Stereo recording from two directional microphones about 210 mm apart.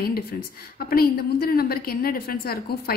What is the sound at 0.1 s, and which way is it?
A woman's voice, 45° left (ahead or behind).